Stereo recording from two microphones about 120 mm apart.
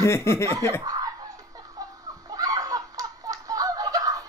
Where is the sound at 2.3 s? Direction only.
30° right (ahead or behind).